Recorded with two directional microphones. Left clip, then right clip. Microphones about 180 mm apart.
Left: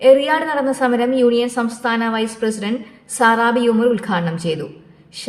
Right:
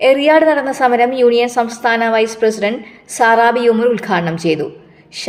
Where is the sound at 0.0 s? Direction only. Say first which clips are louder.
Right 3 dB; 15° right (ahead or behind).